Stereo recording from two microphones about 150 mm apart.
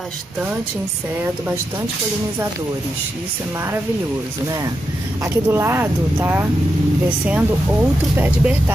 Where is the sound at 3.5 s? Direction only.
20° right (ahead or behind).